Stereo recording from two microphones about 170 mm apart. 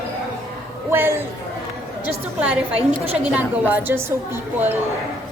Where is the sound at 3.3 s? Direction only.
10° right (ahead or behind).